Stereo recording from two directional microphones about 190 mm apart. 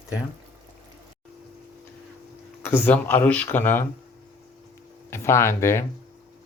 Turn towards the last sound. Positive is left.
turn(degrees=15)  # may be behind; listen again after turning